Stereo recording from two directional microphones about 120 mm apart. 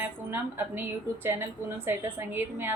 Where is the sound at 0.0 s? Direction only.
20° right (ahead or behind).